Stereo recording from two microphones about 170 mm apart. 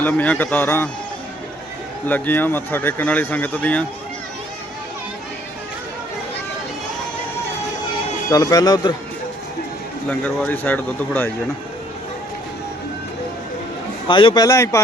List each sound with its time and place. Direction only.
0.0 s speech: 10° left (ahead or behind)
2.0 s speech: 10° left (ahead or behind)
8.3 s a man's voice: 20° left (ahead or behind)
10.1 s speech: 10° left (ahead or behind)
14.1 s a man's voice: 30° left (ahead or behind)